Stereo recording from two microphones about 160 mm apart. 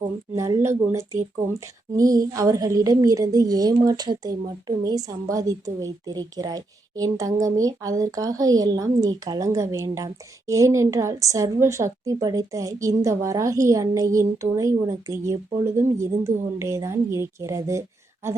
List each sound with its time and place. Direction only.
0.3 s a woman's voice: 20° right (ahead or behind)